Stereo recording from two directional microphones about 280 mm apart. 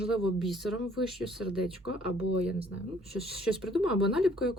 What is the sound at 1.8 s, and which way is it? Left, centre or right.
Speech, centre.